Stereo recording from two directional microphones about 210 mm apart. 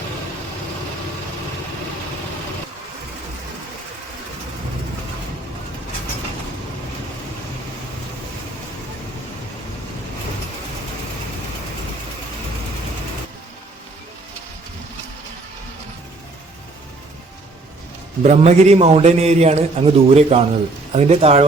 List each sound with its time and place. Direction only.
18.2 s a man's voice: 35° right (ahead or behind)